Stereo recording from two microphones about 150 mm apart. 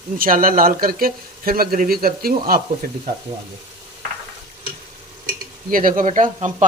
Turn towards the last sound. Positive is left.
turn(degrees=-60)  # may be behind; listen again after turning